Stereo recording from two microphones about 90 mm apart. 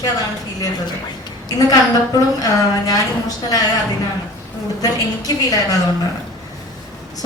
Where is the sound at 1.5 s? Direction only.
45° left (ahead or behind).